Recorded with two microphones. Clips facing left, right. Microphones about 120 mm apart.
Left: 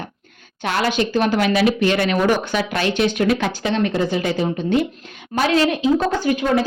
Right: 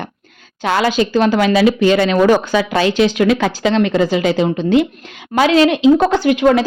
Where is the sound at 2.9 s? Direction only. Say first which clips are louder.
Right 3 dB; 90° right.